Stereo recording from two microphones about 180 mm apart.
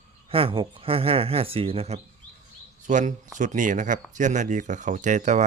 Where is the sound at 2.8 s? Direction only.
45° right (ahead or behind).